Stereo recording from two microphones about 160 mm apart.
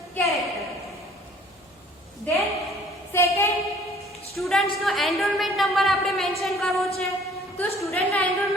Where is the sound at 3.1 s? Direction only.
15° left (ahead or behind).